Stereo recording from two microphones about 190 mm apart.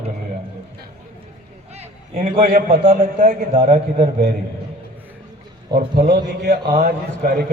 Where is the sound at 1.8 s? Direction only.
35° right (ahead or behind).